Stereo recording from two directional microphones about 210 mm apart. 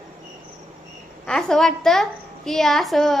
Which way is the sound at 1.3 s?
5° left (ahead or behind).